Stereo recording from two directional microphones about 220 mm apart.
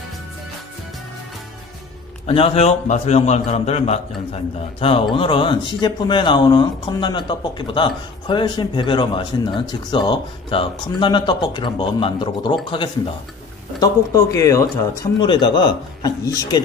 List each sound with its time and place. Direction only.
2.2 s speech: 25° left (ahead or behind)